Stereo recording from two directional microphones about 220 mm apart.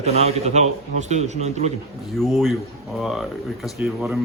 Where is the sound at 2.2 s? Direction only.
Centre (ahead or behind).